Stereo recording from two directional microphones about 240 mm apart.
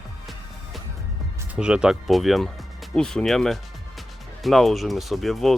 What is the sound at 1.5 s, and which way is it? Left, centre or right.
Speech, centre.